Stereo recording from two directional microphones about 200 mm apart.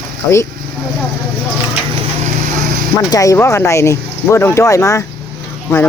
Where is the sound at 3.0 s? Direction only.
15° left (ahead or behind).